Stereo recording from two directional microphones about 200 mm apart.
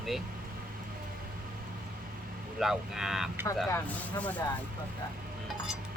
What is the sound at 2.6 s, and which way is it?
Speech, centre (ahead or behind).